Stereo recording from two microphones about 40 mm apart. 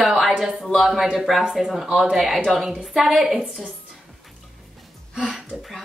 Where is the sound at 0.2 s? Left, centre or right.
Centre.